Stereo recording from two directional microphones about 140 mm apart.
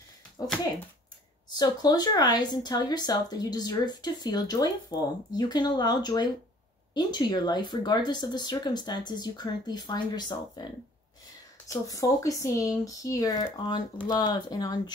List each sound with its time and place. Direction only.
1.5 s speech: 30° left (ahead or behind)